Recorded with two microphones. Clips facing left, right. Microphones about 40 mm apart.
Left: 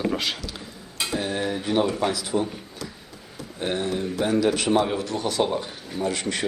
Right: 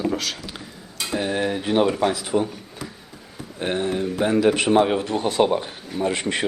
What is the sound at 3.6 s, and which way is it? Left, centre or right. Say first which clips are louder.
Speech: right 3 dB; centre.